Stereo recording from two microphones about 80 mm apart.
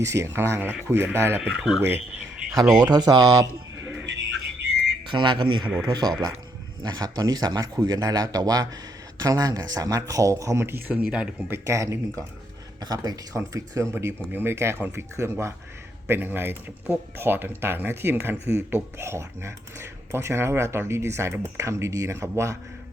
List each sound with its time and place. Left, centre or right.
0.0 s speech: right
1.4 s speech: centre
2.7 s speech: right
5.0 s speech: right
5.9 s speech: right; by 11.4 s centre
11.4 s speech: right
12.8 s speech: right
13.3 s speech: right
13.9 s speech: right